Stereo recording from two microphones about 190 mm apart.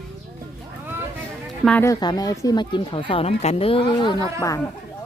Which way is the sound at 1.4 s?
Centre (ahead or behind).